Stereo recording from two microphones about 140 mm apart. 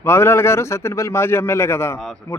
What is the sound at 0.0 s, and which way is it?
A man's voice, 20° left (ahead or behind).